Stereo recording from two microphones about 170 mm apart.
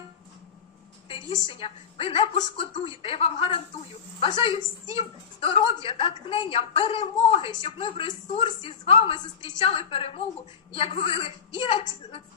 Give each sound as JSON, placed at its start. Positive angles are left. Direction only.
{"t": 1.0, "sound": "a woman's voice", "side_deg": 30}